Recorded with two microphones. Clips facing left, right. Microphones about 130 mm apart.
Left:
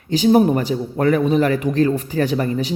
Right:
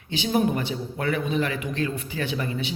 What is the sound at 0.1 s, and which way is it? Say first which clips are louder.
A woman's voice: left 9 dB; 40° left (ahead or behind).